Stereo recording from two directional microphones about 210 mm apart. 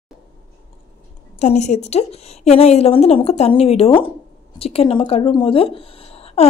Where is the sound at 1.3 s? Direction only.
35° left (ahead or behind).